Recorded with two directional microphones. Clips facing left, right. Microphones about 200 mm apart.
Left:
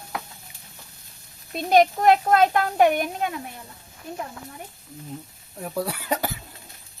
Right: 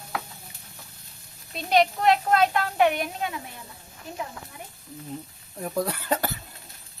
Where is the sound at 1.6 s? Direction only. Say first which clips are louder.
Left 4 dB; 45° left (ahead or behind).